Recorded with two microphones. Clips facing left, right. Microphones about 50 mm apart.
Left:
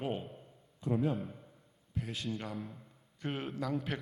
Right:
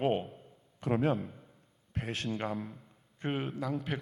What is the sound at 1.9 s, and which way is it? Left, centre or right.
Speech, right.